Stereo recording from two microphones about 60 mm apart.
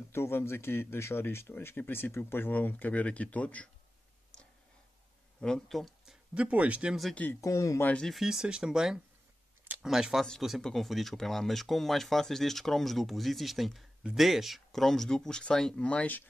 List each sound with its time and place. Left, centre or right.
0.1 s speech: left
5.4 s speech: centre
6.3 s speech: right
7.3 s speech: left
8.1 s speech: centre; by 16.3 s left